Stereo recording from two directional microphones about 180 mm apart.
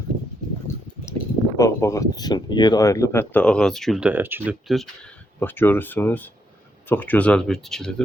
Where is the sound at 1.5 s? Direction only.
15° left (ahead or behind); by 4.5 s 10° right (ahead or behind).